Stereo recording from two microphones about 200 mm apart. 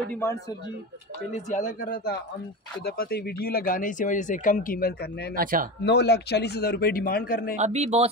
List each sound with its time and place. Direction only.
0.1 s a man's voice: 10° left (ahead or behind)
1.3 s speech: 40° left (ahead or behind)
5.3 s speech: 45° right (ahead or behind)
5.9 s speech: 55° left (ahead or behind)
7.5 s a man's voice: 35° right (ahead or behind)